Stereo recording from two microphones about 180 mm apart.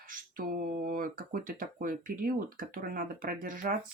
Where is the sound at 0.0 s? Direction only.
50° right (ahead or behind).